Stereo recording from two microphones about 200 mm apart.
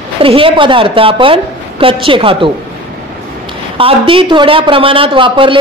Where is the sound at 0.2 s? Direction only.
25° right (ahead or behind).